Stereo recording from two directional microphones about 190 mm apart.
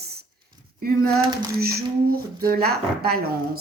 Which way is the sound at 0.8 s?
50° right (ahead or behind).